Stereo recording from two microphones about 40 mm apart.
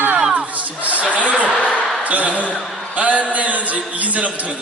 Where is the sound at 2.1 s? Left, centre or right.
Right.